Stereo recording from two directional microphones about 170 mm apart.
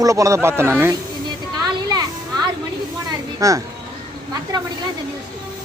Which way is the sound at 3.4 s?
20° right (ahead or behind).